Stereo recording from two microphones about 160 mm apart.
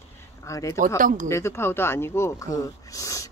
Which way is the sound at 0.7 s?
60° right (ahead or behind).